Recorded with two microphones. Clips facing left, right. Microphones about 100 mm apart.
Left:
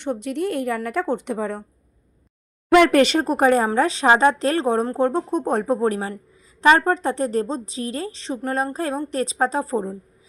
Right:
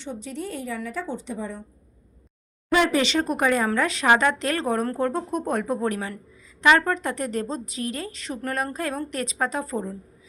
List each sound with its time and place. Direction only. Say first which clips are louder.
0.0 s a woman's voice: left 8 dB; 65° left (ahead or behind)
2.7 s speech: left 6 dB; 60° left (ahead or behind); by 9.9 s 35° left (ahead or behind)